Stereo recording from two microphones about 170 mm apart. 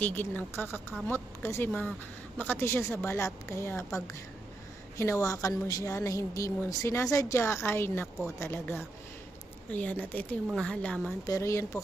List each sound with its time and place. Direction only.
0.0 s a woman's voice: 10° left (ahead or behind)
11.3 s a woman's voice: 15° left (ahead or behind)